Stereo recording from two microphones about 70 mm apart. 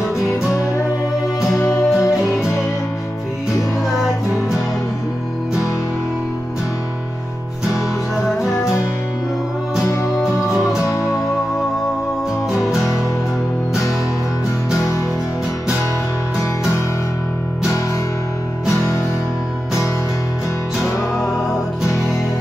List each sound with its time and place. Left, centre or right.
1.6 s music: left
10.5 s music: centre
10.9 s music: left